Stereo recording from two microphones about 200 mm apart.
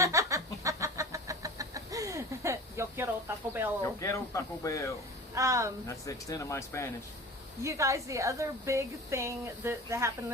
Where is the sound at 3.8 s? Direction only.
15° left (ahead or behind).